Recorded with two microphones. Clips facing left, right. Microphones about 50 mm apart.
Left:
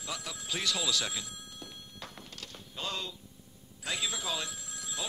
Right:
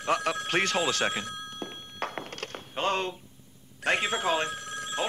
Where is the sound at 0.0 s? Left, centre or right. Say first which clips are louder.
Right 13 dB; right.